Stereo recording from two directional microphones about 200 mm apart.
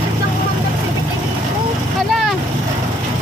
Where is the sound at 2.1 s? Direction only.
Centre (ahead or behind).